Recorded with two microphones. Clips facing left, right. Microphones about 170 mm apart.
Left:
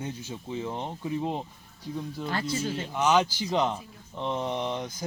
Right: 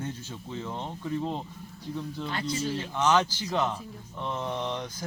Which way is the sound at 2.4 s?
10° left (ahead or behind).